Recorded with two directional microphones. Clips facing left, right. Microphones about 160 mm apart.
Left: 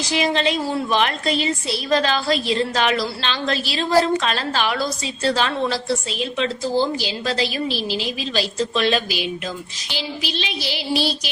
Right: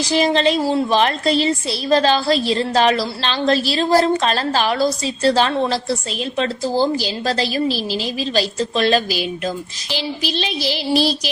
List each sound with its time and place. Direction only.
0.0 s a woman's voice: 35° right (ahead or behind)